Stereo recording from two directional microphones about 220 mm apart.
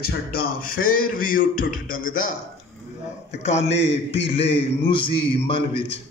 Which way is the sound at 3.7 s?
55° left (ahead or behind).